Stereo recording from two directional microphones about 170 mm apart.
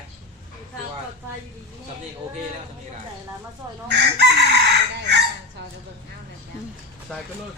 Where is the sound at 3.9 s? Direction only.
90° right.